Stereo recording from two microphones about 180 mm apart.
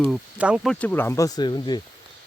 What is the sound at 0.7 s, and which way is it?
Speech, 10° left (ahead or behind).